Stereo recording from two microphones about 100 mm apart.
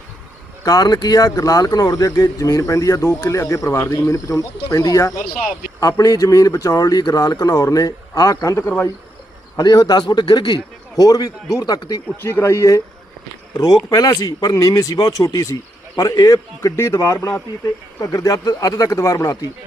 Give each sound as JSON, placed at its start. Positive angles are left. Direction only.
{"t": 0.6, "sound": "a man's voice", "side_deg": 40}
{"t": 12.2, "sound": "speech", "side_deg": 25}
{"t": 13.9, "sound": "speech", "side_deg": 40}